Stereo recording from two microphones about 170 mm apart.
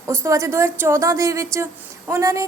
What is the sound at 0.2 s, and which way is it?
A woman's voice, 15° right (ahead or behind).